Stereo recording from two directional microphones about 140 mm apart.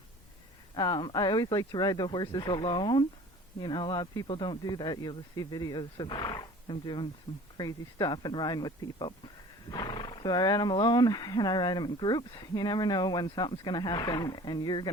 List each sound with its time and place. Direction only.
0.8 s speech: 30° left (ahead or behind)